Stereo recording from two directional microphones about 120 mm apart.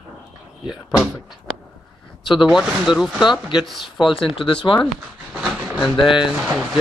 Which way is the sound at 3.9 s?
45° left (ahead or behind).